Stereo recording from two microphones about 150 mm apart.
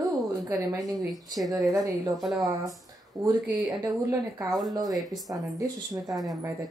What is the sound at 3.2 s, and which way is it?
Speech, 30° right (ahead or behind).